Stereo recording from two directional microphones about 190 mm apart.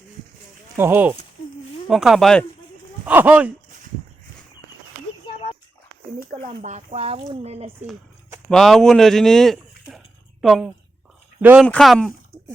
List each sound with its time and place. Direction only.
0.8 s speech: 10° right (ahead or behind)
6.3 s speech: 40° right (ahead or behind)
8.4 s speech: centre (ahead or behind)